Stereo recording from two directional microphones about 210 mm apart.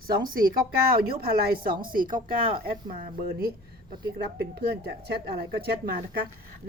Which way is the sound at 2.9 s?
45° right (ahead or behind).